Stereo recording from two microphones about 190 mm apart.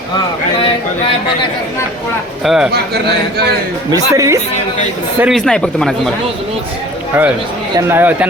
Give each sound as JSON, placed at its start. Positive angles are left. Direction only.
{"t": 2.4, "sound": "speech", "side_deg": 0}
{"t": 2.7, "sound": "speech", "side_deg": -60}
{"t": 3.9, "sound": "speech", "side_deg": -15}
{"t": 5.2, "sound": "speech", "side_deg": 0}
{"t": 7.9, "sound": "speech", "side_deg": -10}